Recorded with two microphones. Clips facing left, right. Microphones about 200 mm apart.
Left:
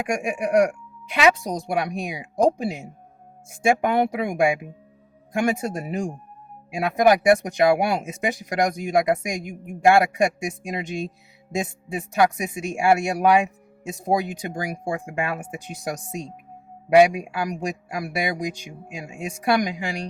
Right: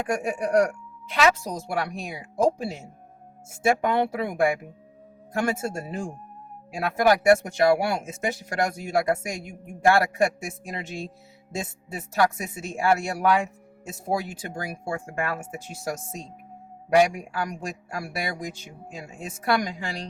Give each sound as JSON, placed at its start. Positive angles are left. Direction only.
{"t": 0.0, "sound": "speech", "side_deg": 15}